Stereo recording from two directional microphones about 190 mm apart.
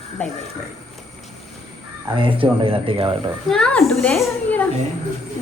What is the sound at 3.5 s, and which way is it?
A woman's voice, 5° left (ahead or behind).